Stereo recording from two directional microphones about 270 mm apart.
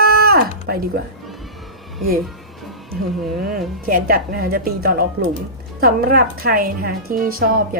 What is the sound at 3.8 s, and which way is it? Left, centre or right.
A woman's voice, right.